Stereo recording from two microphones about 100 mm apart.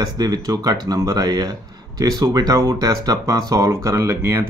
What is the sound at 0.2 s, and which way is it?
Speech, 40° right (ahead or behind).